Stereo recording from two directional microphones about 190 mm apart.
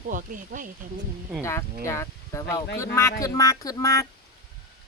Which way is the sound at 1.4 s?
15° left (ahead or behind).